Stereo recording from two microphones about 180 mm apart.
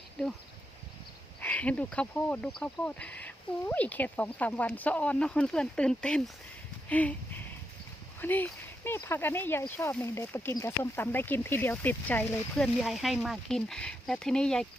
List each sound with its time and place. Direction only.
1.4 s speech: 10° left (ahead or behind)
6.8 s a sound: 10° left (ahead or behind)
8.2 s speech: 10° left (ahead or behind)